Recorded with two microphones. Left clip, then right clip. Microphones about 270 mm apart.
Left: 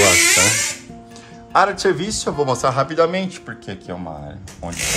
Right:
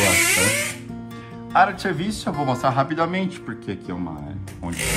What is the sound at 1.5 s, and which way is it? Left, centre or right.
Speech, centre.